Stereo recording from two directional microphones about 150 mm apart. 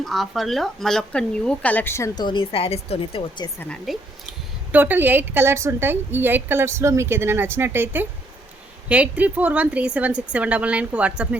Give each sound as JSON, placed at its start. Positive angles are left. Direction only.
{"t": 0.0, "sound": "speech", "side_deg": 0}
{"t": 2.1, "sound": "speech", "side_deg": 30}
{"t": 3.9, "sound": "speech", "side_deg": 0}
{"t": 4.7, "sound": "a woman's voice", "side_deg": -10}